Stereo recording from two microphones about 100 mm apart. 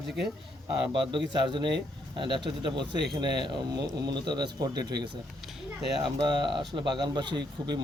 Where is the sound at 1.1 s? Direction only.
50° right (ahead or behind).